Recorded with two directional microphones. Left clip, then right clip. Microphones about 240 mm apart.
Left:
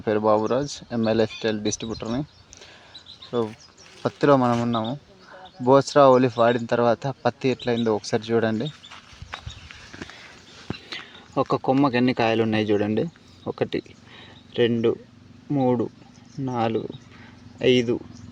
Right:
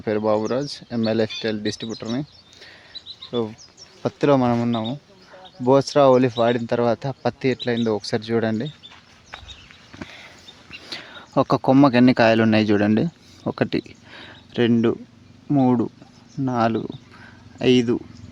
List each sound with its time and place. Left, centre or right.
0.0 s speech: centre
4.0 s speech: centre
10.8 s speech: right